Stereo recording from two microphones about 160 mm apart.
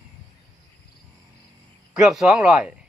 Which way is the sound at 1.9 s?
5° right (ahead or behind).